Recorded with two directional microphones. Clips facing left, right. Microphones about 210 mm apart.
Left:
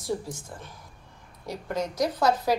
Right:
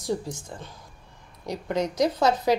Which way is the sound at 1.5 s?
20° right (ahead or behind).